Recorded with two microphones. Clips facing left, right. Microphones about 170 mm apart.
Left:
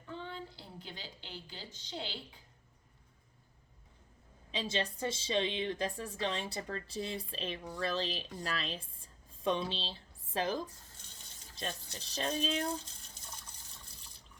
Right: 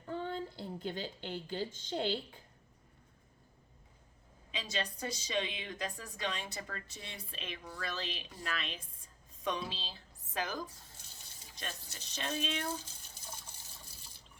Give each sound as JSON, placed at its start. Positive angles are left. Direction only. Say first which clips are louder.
{"t": 0.0, "sound": "a woman's voice", "louder": "right 5 dB", "side_deg": -45}
{"t": 4.5, "sound": "a woman's voice", "louder": "left 3 dB", "side_deg": 25}